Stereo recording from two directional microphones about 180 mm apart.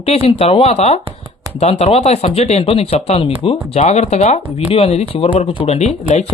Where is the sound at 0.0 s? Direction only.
35° left (ahead or behind).